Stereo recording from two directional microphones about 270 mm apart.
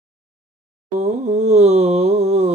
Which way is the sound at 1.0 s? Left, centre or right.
Right.